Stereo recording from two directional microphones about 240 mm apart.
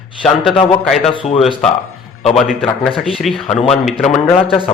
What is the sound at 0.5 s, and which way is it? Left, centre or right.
Speech, left.